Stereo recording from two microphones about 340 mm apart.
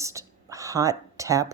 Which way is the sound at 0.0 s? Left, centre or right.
Centre.